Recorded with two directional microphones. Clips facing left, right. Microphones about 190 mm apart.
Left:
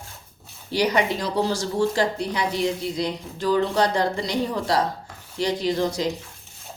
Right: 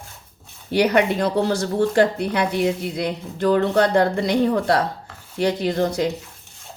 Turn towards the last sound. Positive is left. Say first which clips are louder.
# right 3 dB
turn(degrees=-55)  # may be behind; listen again after turning